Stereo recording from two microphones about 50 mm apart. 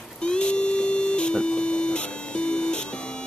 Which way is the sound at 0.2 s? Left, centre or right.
Centre.